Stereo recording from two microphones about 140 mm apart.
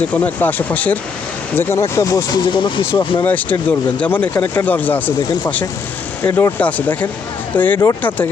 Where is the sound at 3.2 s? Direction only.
10° left (ahead or behind).